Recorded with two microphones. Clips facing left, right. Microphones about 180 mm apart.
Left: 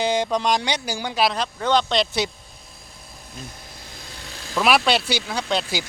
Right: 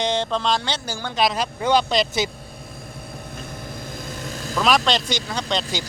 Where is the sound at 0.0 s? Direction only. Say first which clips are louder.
Left 1 dB; 10° left (ahead or behind).